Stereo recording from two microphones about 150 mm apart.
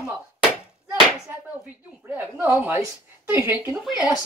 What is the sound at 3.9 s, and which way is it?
Speech, 25° left (ahead or behind).